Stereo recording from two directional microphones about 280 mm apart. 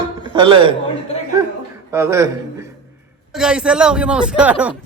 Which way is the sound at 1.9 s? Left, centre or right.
Centre.